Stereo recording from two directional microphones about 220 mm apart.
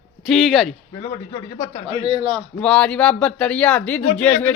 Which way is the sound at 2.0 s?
25° right (ahead or behind).